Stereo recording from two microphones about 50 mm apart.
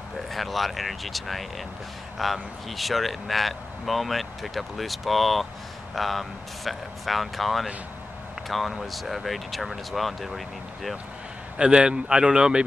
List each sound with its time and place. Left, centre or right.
0.3 s speech: centre
11.5 s speech: centre